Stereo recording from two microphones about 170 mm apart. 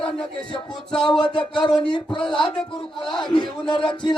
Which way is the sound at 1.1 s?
30° left (ahead or behind).